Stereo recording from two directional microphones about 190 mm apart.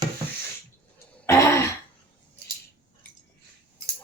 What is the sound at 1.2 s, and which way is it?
Throat clearing, 15° left (ahead or behind).